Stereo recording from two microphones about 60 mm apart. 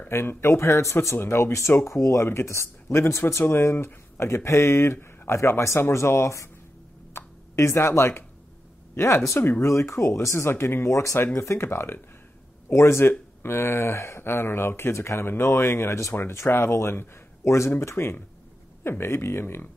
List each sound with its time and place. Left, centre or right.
0.1 s speech: left
7.2 s speech: left